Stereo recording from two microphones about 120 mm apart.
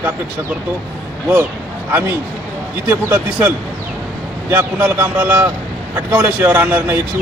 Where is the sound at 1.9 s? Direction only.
15° right (ahead or behind).